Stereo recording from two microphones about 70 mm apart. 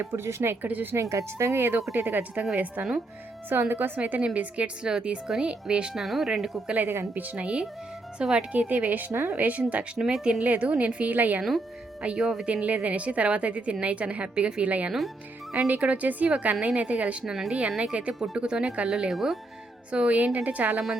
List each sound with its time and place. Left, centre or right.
0.0 s speech: right
0.6 s a woman's voice: right
1.1 s a woman's voice: right
3.5 s a woman's voice: right; by 5.9 s centre
5.9 s speech: centre
6.7 s a woman's voice: right
10.0 s speech: centre
10.4 s a woman's voice: right
12.0 s a woman's voice: centre
19.9 s a woman's voice: centre
20.7 s speech: centre